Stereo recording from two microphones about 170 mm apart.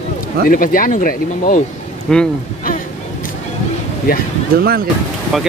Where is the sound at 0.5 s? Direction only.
55° left (ahead or behind).